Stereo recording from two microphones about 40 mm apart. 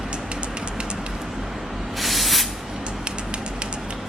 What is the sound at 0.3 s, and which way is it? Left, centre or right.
Train, right.